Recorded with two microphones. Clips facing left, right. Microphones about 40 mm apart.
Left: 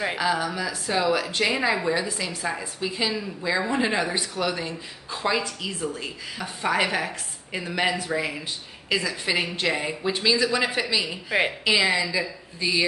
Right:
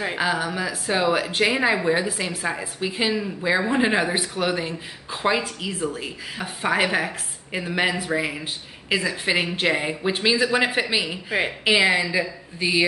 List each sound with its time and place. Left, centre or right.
0.2 s speech: right